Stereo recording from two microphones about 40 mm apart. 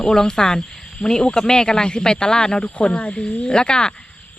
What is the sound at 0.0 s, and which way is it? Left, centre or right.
Speech, centre.